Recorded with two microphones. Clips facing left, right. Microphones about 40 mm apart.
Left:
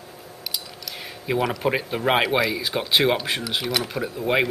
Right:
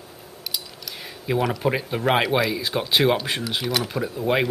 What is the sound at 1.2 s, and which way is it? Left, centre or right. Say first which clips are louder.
Speech: even; centre.